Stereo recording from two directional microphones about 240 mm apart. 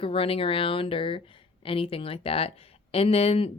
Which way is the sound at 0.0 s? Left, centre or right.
Left.